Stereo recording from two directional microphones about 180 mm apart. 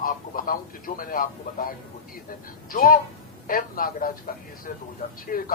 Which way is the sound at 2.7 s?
50° left (ahead or behind).